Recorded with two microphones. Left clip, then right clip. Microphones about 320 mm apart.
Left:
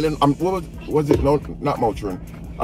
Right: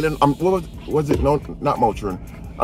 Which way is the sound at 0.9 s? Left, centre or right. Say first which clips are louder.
Even; centre.